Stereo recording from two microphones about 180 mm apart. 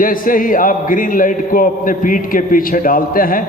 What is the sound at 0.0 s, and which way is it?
A man's voice, 50° left (ahead or behind).